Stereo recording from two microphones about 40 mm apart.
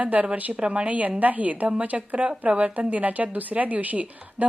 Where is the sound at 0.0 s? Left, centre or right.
Right.